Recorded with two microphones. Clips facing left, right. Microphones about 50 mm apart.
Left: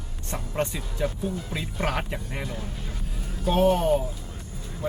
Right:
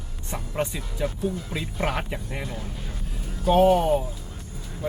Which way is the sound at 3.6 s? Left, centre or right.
Right.